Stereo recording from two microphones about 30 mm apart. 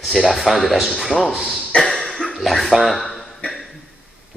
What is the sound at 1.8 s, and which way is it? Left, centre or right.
Cough, centre.